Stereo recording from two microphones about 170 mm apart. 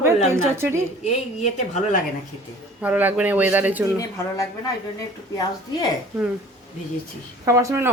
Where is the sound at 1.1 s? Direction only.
45° left (ahead or behind).